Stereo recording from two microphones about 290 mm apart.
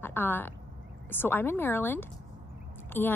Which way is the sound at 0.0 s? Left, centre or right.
Centre.